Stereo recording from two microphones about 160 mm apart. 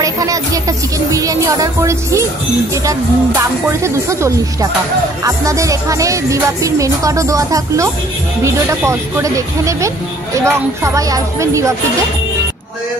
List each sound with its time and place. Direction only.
0.0 s speech: 20° right (ahead or behind)